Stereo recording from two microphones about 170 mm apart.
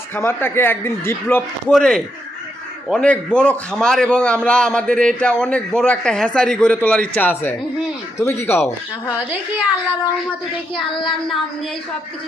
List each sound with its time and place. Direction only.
0.2 s a man's voice: 15° left (ahead or behind)
9.0 s a child's voice: 10° right (ahead or behind)
10.8 s child singing: 30° left (ahead or behind)